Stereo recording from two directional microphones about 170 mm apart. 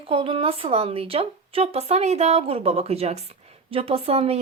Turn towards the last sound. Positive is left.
turn(degrees=-35)  # may be behind; listen again after turning